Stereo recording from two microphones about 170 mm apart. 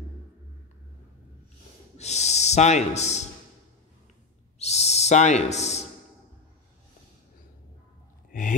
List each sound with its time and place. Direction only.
2.0 s a man's voice: 40° left (ahead or behind)
4.6 s owl: 40° left (ahead or behind)
8.3 s a sound: 50° left (ahead or behind)